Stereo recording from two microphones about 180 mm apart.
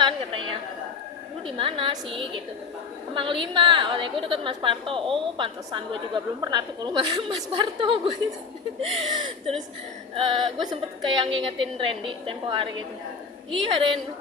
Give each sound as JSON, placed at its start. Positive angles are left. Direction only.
{"t": 1.5, "sound": "a woman's voice", "side_deg": -30}